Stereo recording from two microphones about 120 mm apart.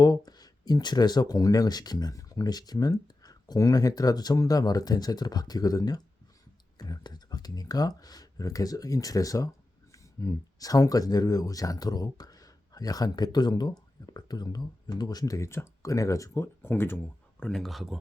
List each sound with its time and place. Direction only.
0.3 s speech: 35° left (ahead or behind); by 17.0 s 20° left (ahead or behind)
17.4 s speech: 5° left (ahead or behind)